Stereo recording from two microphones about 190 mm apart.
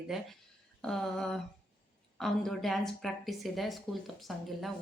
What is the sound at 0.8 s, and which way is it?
A woman's voice, 5° left (ahead or behind).